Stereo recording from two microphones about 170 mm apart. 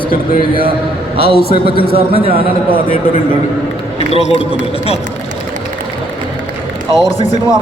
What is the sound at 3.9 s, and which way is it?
Speech, 40° left (ahead or behind).